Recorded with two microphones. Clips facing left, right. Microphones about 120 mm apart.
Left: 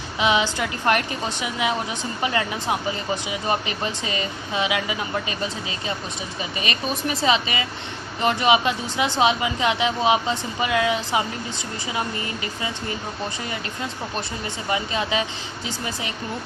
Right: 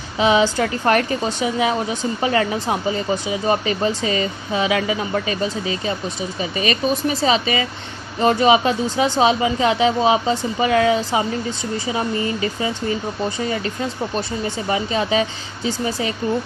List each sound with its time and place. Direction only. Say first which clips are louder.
0.2 s speech: right 5 dB; 35° right (ahead or behind)
6.7 s speech: right 7 dB; 35° right (ahead or behind)
14.7 s speech: right 4 dB; 35° right (ahead or behind)